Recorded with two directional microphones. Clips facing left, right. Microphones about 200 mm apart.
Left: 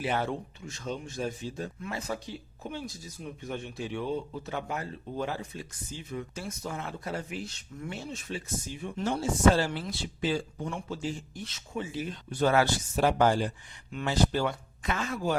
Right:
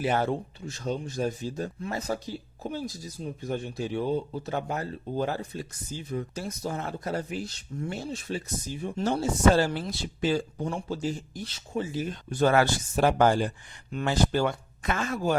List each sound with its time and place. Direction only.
0.0 s speech: 45° right (ahead or behind)